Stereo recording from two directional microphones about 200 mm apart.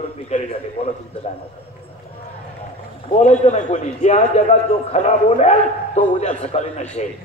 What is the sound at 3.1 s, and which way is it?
A man's voice, 35° left (ahead or behind).